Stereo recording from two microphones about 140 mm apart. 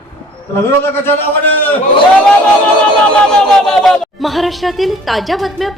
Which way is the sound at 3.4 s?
5° left (ahead or behind).